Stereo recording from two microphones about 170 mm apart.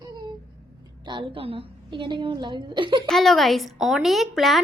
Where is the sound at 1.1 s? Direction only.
30° right (ahead or behind).